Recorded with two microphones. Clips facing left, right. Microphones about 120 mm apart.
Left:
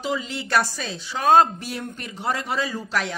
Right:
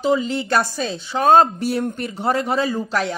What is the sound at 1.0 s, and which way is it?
Speech, 50° right (ahead or behind).